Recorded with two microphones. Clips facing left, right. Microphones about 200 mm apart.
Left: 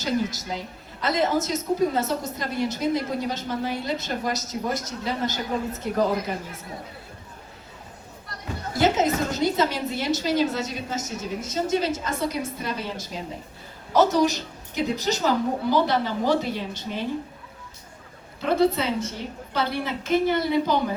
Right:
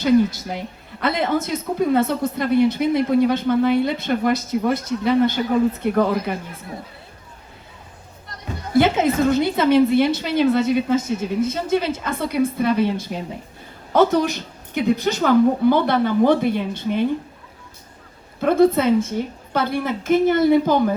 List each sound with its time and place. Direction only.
0.0 s a woman's voice: 60° right (ahead or behind)
8.7 s a woman's voice: 55° right (ahead or behind)
18.3 s a woman's voice: 50° right (ahead or behind)